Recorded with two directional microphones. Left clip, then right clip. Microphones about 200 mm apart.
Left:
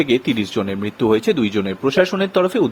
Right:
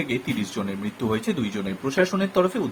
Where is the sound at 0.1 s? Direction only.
45° left (ahead or behind).